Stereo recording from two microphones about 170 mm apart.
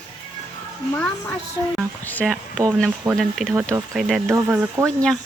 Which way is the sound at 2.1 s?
5° left (ahead or behind).